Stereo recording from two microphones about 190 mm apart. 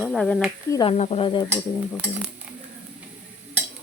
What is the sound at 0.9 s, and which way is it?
Speech, 35° left (ahead or behind).